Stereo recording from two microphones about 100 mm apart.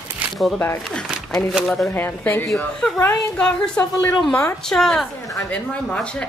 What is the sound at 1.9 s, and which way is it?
Speech, 20° left (ahead or behind).